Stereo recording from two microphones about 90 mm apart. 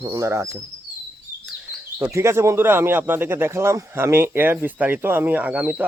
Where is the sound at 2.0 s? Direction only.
30° right (ahead or behind).